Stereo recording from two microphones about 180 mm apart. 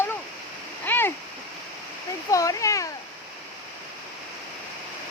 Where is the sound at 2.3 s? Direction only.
20° left (ahead or behind).